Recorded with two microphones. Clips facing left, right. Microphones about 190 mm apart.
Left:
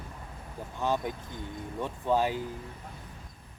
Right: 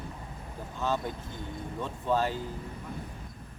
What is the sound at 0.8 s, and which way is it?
Speech, 15° left (ahead or behind).